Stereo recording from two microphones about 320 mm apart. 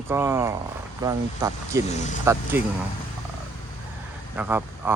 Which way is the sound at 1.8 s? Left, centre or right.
Left.